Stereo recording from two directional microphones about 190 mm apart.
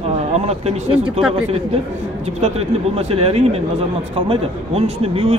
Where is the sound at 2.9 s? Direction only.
30° right (ahead or behind).